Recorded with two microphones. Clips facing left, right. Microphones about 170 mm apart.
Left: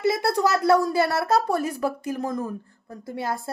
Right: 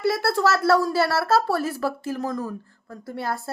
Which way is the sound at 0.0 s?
20° left (ahead or behind).